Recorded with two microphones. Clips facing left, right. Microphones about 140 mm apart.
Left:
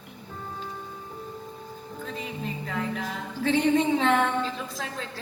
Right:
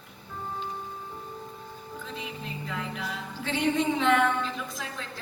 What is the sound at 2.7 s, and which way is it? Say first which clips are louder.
Music: left 3 dB; 45° left (ahead or behind).